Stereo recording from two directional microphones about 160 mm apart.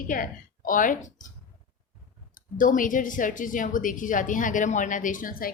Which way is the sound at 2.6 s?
55° left (ahead or behind).